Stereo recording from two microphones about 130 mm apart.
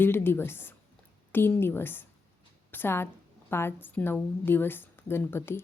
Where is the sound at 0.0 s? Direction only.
15° left (ahead or behind).